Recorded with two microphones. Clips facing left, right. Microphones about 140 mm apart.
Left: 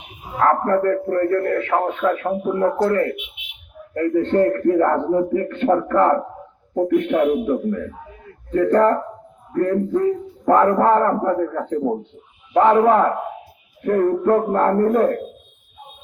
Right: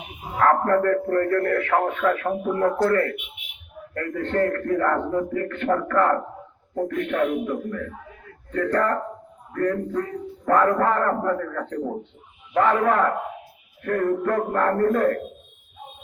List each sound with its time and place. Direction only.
0.3 s a man's voice: 15° left (ahead or behind)
12.5 s a man's voice: 20° left (ahead or behind)